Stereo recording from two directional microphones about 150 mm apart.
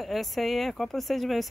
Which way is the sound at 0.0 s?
Centre (ahead or behind).